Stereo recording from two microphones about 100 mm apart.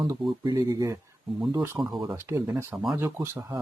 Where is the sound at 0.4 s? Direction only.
35° right (ahead or behind).